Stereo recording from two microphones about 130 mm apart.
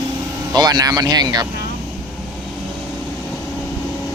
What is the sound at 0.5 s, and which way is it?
Speech, 30° right (ahead or behind).